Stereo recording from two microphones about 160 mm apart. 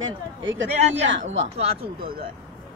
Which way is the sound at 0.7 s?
40° right (ahead or behind).